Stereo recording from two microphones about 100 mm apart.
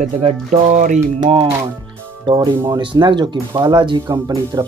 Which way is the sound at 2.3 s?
55° right (ahead or behind).